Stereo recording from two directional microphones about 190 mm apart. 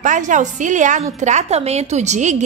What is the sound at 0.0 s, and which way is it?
A woman's voice, 40° right (ahead or behind).